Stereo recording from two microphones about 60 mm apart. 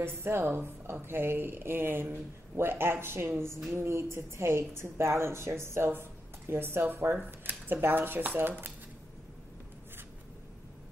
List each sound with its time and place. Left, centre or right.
0.0 s a woman's voice: right